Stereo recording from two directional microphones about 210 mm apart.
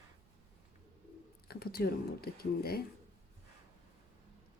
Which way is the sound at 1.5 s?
45° left (ahead or behind).